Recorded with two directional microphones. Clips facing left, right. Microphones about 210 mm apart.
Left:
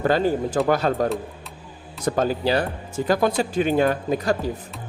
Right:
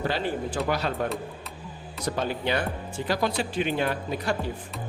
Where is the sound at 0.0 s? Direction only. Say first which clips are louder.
Left 8 dB; 45° left (ahead or behind).